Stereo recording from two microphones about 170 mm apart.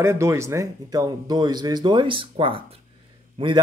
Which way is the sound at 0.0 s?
15° right (ahead or behind).